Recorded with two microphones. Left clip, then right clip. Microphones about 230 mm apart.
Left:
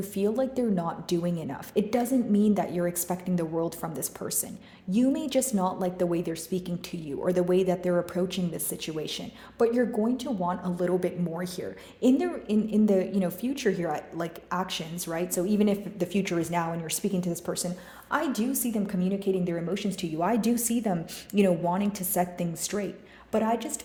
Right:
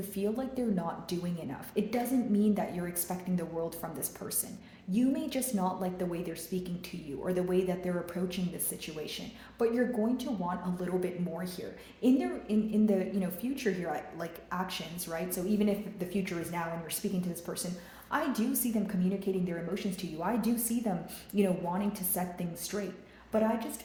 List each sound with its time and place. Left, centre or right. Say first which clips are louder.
0.1 s a woman's voice: left 8 dB; left
4.9 s a woman's voice: left 5 dB; left